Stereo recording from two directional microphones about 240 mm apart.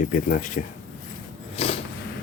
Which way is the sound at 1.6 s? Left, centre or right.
Left.